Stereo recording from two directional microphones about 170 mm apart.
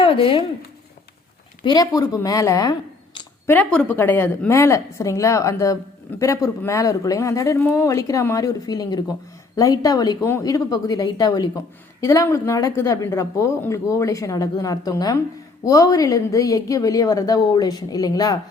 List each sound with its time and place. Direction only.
0.0 s speech: 30° left (ahead or behind)
1.6 s a woman's voice: 20° left (ahead or behind)